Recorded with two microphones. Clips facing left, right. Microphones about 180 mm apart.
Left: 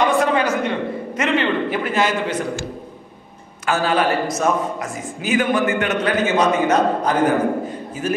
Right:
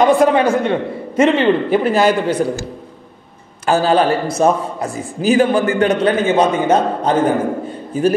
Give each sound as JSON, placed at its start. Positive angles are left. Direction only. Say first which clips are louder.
{"t": 0.0, "sound": "a sound", "louder": "right 6 dB", "side_deg": -30}
{"t": 1.1, "sound": "a man's voice", "louder": "right 8 dB", "side_deg": -30}
{"t": 3.6, "sound": "a man's voice", "louder": "right 5 dB", "side_deg": -30}